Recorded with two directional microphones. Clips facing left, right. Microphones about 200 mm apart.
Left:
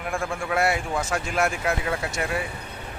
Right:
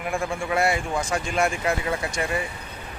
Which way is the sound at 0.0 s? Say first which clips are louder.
Right 1 dB; centre (ahead or behind).